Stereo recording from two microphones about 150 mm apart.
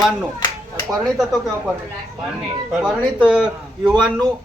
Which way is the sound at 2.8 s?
10° right (ahead or behind).